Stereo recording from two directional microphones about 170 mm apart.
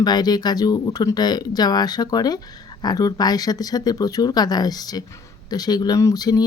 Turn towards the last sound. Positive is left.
turn(degrees=20)  # may be behind; listen again after turning